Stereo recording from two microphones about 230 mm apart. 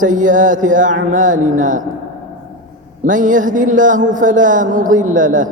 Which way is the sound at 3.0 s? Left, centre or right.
Right.